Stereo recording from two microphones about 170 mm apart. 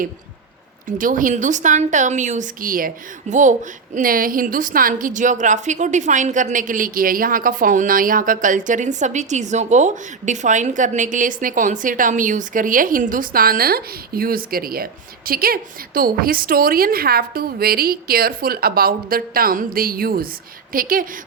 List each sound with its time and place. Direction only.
0.9 s a woman's voice: 50° right (ahead or behind)